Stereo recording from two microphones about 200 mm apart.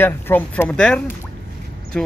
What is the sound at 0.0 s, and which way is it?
A man's voice, 10° left (ahead or behind).